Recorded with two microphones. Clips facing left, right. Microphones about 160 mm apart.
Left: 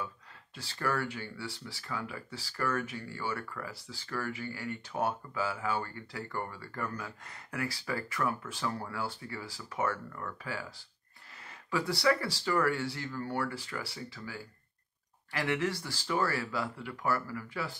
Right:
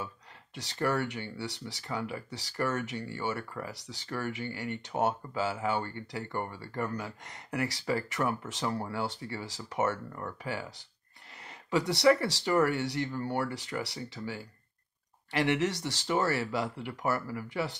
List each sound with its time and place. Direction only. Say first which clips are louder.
0.6 s speech: right 3 dB; 20° right (ahead or behind)
11.7 s speech: right 5 dB; 20° right (ahead or behind)